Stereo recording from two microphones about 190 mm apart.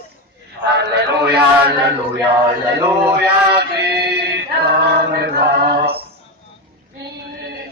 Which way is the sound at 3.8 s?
60° right (ahead or behind).